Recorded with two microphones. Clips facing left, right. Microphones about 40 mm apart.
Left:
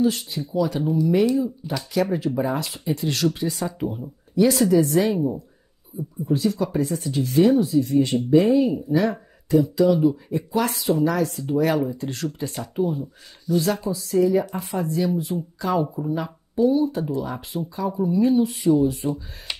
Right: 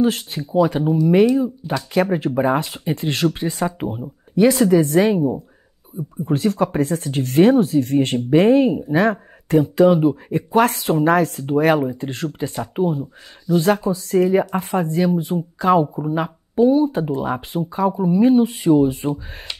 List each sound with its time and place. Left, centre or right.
0.0 s speech: right
6.2 s speech: right
13.8 s speech: right